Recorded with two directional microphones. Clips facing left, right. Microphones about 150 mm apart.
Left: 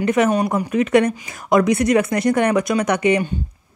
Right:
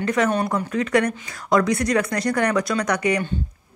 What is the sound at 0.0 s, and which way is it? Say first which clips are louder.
Speech: left 4 dB; 20° left (ahead or behind).